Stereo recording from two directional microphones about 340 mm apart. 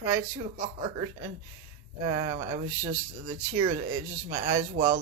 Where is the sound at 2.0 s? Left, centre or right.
Centre.